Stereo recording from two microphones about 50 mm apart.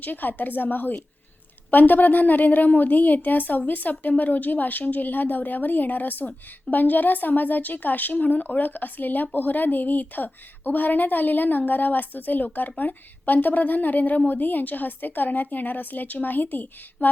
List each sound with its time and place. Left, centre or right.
0.0 s a woman's voice: left